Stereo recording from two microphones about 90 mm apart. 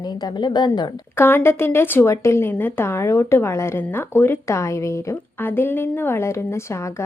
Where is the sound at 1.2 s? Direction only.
25° left (ahead or behind).